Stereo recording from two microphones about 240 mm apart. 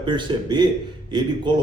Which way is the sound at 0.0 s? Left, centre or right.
Centre.